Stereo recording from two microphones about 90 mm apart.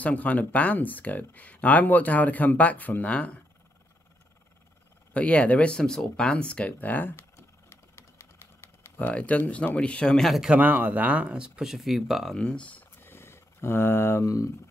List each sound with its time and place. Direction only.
0.0 s speech: 15° left (ahead or behind)
5.1 s speech: 15° left (ahead or behind)
8.9 s speech: 15° left (ahead or behind)
10.5 s speech: 20° right (ahead or behind); by 14.5 s 35° left (ahead or behind)